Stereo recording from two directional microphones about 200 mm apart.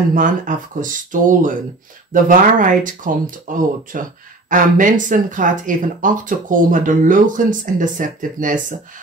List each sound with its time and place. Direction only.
0.1 s speech: 40° right (ahead or behind)